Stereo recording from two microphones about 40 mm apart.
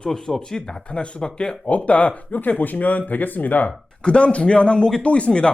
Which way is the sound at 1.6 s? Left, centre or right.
Left.